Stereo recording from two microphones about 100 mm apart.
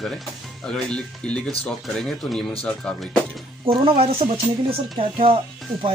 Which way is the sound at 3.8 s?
75° right (ahead or behind).